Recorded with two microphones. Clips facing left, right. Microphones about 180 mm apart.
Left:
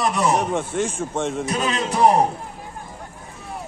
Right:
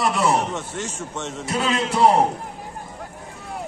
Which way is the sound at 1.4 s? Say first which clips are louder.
Even; 15° left (ahead or behind).